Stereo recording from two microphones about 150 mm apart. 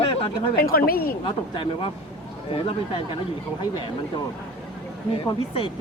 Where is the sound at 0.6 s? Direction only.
80° left.